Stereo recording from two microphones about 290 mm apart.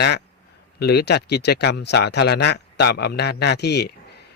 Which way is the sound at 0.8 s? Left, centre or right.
Left.